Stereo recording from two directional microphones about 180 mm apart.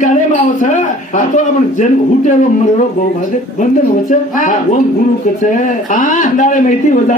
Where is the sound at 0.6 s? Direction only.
45° left (ahead or behind).